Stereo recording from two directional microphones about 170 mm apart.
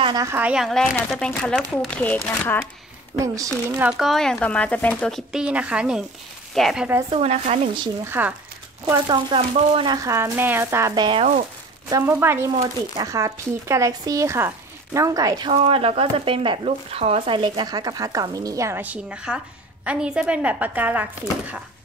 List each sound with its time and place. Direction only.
0.0 s speech: 20° right (ahead or behind); by 2.6 s 15° left (ahead or behind)
3.7 s speech: 5° right (ahead or behind)
7.1 s speech: 35° right (ahead or behind)
8.0 s speech: 10° right (ahead or behind)
9.0 s speech: 30° right (ahead or behind)
10.0 s speech: 15° right (ahead or behind)
15.5 s speech: 35° right (ahead or behind); by 21.5 s 10° right (ahead or behind)